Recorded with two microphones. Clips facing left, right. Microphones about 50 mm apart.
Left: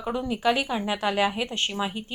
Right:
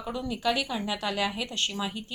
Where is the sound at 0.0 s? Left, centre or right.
Left.